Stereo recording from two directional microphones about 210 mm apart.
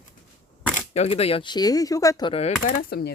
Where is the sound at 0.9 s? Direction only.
30° left (ahead or behind).